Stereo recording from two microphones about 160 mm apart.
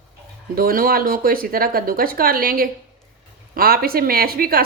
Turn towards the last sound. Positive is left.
turn(degrees=-70)  # may be behind; listen again after turning